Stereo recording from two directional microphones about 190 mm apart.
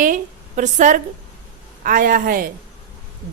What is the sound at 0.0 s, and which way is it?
A woman's voice, 45° right (ahead or behind).